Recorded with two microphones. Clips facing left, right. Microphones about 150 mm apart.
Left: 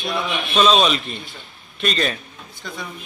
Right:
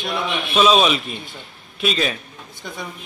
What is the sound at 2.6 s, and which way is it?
Speech, 15° right (ahead or behind).